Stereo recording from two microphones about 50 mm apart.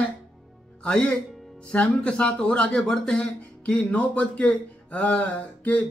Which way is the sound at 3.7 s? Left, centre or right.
Left.